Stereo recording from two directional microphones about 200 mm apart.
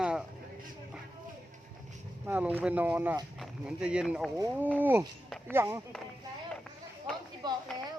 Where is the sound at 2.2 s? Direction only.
10° right (ahead or behind).